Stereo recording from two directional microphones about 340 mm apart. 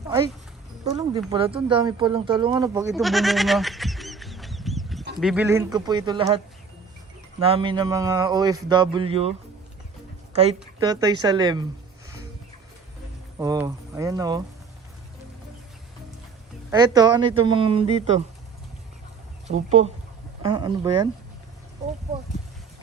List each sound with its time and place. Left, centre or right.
0.9 s a man's voice: centre
10.3 s a man's voice: centre
13.4 s a man's voice: centre
16.7 s a man's voice: centre
19.5 s a man's voice: centre